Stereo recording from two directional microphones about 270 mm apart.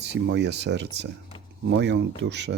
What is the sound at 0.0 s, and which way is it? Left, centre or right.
Speech, right.